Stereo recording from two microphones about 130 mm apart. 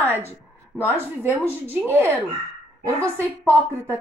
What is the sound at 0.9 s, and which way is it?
A woman's voice, 15° right (ahead or behind).